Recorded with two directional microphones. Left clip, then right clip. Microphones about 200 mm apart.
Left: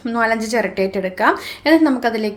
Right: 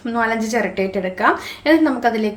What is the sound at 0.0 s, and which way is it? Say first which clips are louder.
A woman's voice: left 2 dB; 25° left (ahead or behind).